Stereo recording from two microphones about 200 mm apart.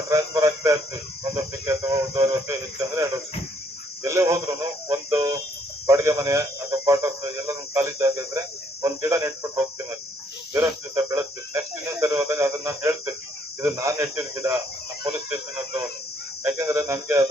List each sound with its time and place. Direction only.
0.1 s a man's voice: 15° right (ahead or behind)
16.4 s a man's voice: 15° right (ahead or behind)